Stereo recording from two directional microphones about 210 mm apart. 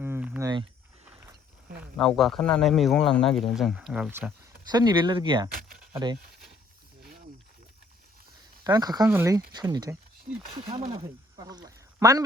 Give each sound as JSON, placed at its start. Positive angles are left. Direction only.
{"t": 0.0, "sound": "a sound", "side_deg": -10}
{"t": 1.8, "sound": "speech", "side_deg": 0}
{"t": 4.7, "sound": "speech", "side_deg": -20}
{"t": 8.6, "sound": "speech", "side_deg": -20}